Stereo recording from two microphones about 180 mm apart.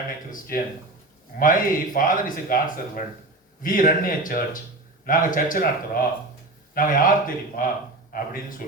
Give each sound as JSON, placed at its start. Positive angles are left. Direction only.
{"t": 0.3, "sound": "speech", "side_deg": 50}